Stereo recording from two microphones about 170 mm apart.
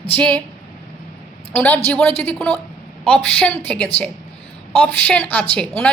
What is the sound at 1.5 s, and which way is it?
Speech, 10° left (ahead or behind).